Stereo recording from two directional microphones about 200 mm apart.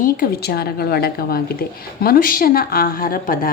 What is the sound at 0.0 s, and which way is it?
Speech, 45° left (ahead or behind).